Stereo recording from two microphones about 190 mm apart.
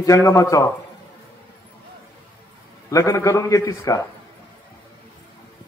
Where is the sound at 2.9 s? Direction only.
15° left (ahead or behind).